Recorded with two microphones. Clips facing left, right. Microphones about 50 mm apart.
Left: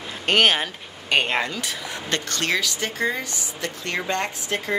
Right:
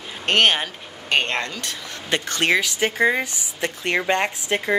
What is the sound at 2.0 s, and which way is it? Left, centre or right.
Speech, centre.